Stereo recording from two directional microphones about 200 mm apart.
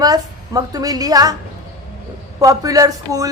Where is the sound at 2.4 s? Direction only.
15° right (ahead or behind).